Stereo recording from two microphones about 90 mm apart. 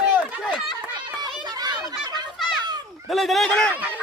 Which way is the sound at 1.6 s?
50° right (ahead or behind).